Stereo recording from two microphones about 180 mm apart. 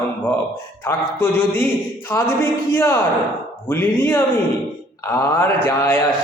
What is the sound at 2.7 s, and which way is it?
A man's voice, 15° left (ahead or behind).